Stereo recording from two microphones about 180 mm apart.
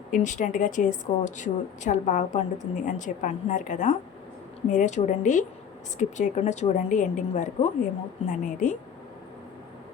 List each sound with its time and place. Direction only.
0.1 s a woman's voice: 45° left (ahead or behind)